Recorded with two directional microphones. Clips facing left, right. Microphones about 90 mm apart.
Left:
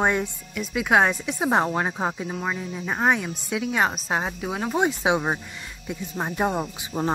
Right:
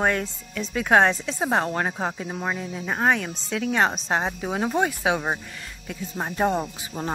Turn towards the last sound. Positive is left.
turn(degrees=20)  # may be behind; listen again after turning